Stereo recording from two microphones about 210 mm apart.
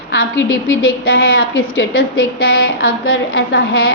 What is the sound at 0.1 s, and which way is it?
A woman's voice, 60° left (ahead or behind).